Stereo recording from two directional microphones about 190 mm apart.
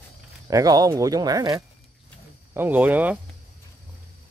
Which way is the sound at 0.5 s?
20° right (ahead or behind).